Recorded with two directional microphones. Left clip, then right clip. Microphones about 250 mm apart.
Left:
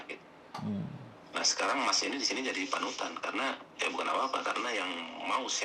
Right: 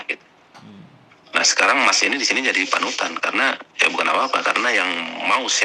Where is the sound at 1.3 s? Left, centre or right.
Right.